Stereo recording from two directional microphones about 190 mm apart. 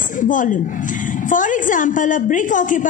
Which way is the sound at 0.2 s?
45° left (ahead or behind).